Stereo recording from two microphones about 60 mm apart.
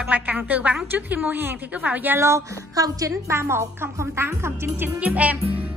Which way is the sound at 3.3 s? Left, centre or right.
Right.